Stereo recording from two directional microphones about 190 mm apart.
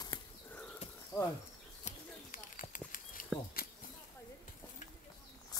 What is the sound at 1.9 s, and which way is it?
Clip-clop, 45° left (ahead or behind).